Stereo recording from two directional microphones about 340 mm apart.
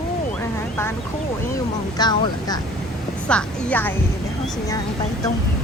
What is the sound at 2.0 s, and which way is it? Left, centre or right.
Speech, centre.